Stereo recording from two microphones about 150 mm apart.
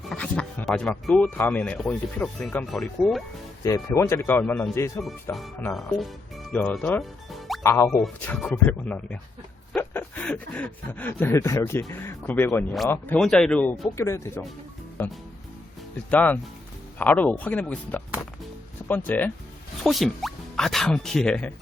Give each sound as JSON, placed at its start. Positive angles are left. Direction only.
{"t": 0.1, "sound": "speech", "side_deg": 5}
{"t": 3.6, "sound": "speech", "side_deg": 20}
{"t": 5.7, "sound": "speech", "side_deg": 0}
{"t": 6.6, "sound": "speech", "side_deg": 10}
{"t": 7.0, "sound": "music", "side_deg": 0}
{"t": 7.6, "sound": "speech", "side_deg": 15}
{"t": 7.9, "sound": "speech", "side_deg": 5}
{"t": 19.8, "sound": "speech", "side_deg": 0}